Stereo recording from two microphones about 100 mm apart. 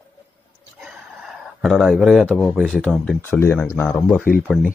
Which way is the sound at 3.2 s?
25° left (ahead or behind).